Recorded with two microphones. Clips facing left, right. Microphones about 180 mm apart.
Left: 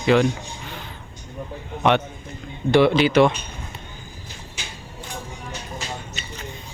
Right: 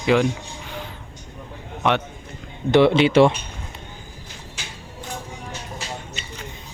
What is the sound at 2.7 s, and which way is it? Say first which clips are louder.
Speech: right 1 dB; 25° right (ahead or behind).